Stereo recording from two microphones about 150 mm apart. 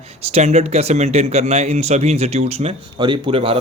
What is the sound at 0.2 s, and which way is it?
Speech, 45° right (ahead or behind).